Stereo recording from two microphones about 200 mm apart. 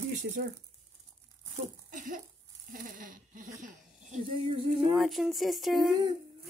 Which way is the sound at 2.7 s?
45° right (ahead or behind).